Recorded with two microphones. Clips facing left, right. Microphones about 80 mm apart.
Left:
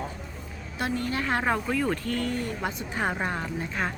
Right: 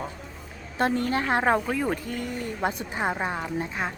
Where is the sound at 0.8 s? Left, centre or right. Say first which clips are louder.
Right 4 dB; right.